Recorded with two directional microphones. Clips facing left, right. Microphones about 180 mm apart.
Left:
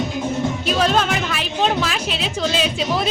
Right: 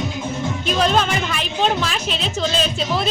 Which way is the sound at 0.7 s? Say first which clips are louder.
Right 1 dB; 5° left (ahead or behind).